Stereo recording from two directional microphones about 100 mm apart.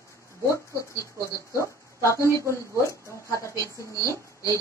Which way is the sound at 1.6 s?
30° left (ahead or behind).